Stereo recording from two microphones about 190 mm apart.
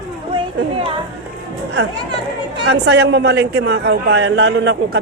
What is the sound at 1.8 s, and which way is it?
A woman's voice, 65° right (ahead or behind).